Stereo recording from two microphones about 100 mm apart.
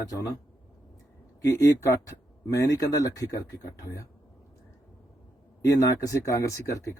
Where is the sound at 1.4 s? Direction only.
30° left (ahead or behind).